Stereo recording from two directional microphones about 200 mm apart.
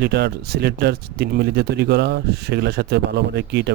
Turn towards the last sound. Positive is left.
turn(degrees=-60)  # may be behind; listen again after turning